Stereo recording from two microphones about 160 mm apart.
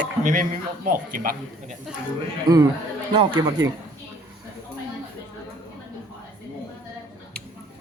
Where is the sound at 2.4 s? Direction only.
25° right (ahead or behind).